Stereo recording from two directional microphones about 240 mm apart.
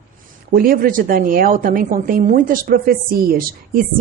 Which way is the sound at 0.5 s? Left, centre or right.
Right.